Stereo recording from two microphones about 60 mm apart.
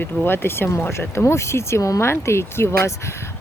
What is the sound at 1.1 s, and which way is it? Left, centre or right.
Speech, left.